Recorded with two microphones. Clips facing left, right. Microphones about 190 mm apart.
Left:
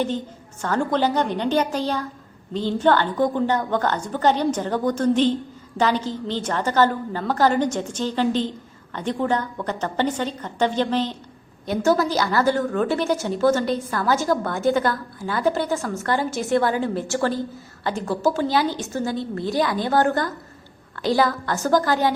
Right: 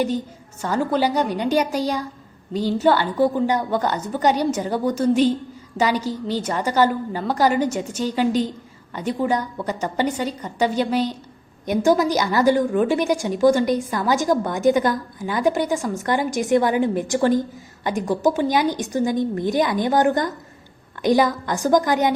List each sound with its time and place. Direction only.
0.6 s a woman's voice: 10° right (ahead or behind)